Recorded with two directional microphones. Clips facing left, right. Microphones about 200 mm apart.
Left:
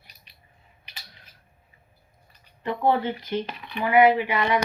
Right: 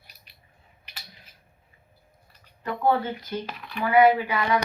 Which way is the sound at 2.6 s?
20° left (ahead or behind).